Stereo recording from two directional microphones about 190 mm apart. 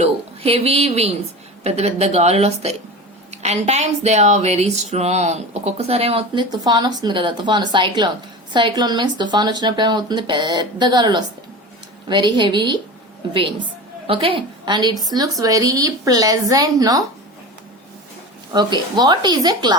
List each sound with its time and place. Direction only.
0.0 s a woman's voice: 30° right (ahead or behind)
18.5 s speech: 20° right (ahead or behind)